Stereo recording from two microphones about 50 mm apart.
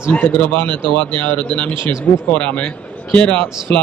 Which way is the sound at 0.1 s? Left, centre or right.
Left.